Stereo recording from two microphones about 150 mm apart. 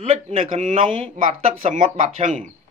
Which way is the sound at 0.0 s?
45° right (ahead or behind).